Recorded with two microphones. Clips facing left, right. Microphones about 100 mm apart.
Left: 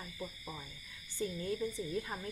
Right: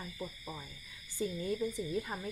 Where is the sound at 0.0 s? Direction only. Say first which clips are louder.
Right 2 dB; 5° right (ahead or behind).